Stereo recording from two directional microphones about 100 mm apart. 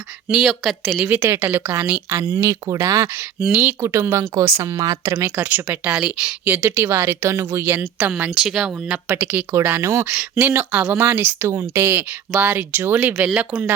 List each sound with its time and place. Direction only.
0.3 s speech: 5° right (ahead or behind)
1.0 s a woman's voice: 20° right (ahead or behind)
3.4 s speech: 10° right (ahead or behind)
3.8 s a woman's voice: 25° right (ahead or behind)
8.4 s a woman's voice: 10° right (ahead or behind)